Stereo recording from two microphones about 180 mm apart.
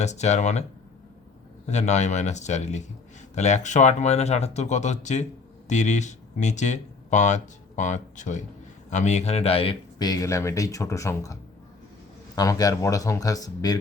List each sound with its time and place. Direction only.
0.0 s speech: 40° left (ahead or behind)
1.6 s speech: 40° left (ahead or behind); by 11.3 s 15° left (ahead or behind)
12.4 s speech: 20° left (ahead or behind)